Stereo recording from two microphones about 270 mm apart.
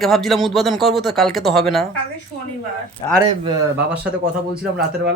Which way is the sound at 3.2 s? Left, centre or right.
Centre.